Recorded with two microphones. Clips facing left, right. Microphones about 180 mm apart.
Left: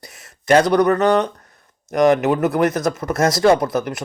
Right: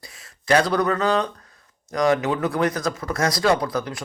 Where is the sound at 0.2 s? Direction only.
20° left (ahead or behind).